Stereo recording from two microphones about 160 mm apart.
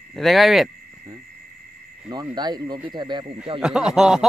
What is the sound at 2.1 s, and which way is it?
Speech, 25° right (ahead or behind).